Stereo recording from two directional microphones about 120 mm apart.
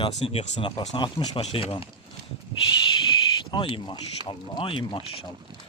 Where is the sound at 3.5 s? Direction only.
40° left (ahead or behind).